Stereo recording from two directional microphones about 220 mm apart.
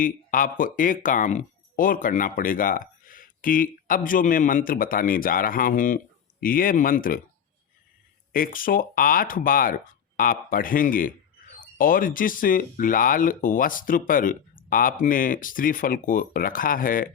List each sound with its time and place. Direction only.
0.0 s speech: 40° left (ahead or behind)
8.3 s speech: 40° left (ahead or behind)